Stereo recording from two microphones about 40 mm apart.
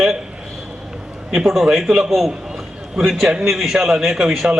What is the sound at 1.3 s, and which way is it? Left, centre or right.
A man's voice, centre.